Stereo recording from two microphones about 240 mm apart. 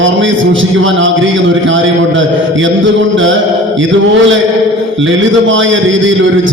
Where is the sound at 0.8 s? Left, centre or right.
Right.